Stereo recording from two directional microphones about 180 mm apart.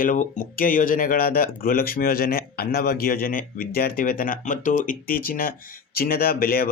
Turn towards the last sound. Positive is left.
turn(degrees=55)  # may be behind; listen again after turning